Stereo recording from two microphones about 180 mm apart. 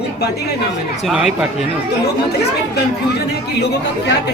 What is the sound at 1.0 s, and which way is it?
Speech, 5° right (ahead or behind).